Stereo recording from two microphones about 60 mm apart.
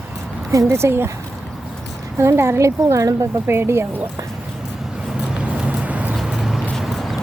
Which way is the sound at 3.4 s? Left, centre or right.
Right.